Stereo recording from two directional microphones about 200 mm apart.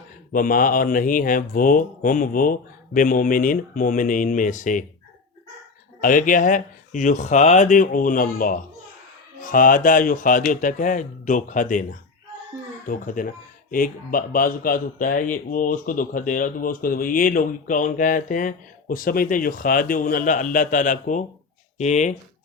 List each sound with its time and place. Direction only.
0.3 s speech: 45° left (ahead or behind)
6.0 s speech: 40° left (ahead or behind)